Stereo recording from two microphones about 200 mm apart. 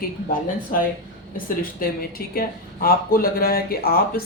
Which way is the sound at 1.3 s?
45° left (ahead or behind).